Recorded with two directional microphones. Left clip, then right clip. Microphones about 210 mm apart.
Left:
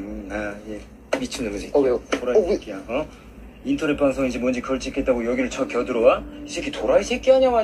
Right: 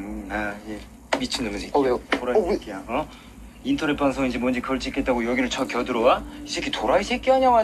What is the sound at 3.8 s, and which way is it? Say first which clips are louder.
Speech: left 3 dB; 10° right (ahead or behind).